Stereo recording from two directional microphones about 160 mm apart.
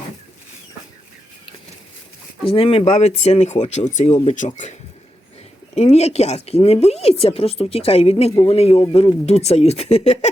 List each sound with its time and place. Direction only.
2.4 s speech: 35° left (ahead or behind)
5.7 s speech: 40° left (ahead or behind)